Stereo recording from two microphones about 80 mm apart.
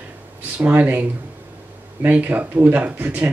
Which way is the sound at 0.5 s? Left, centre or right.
Right.